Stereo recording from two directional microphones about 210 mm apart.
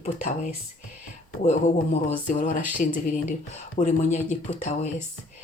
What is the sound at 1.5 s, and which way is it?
Speech, 35° left (ahead or behind).